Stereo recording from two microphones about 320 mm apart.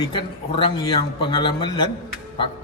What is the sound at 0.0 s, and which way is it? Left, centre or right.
A man's voice, centre.